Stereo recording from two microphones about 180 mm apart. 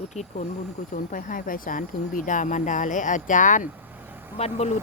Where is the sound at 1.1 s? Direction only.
50° left (ahead or behind).